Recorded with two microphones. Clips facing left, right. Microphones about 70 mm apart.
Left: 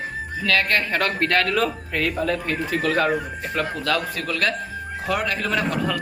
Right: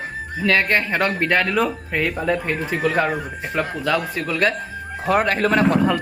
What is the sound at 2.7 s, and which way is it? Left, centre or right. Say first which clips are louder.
Speech: even; centre.